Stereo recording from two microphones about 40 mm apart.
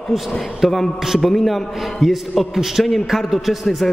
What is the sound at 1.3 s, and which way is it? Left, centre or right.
A man's voice, centre.